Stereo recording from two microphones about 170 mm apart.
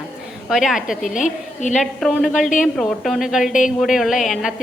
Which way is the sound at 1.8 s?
Centre (ahead or behind).